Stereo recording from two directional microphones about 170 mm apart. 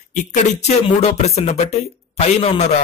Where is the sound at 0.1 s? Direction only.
45° left (ahead or behind).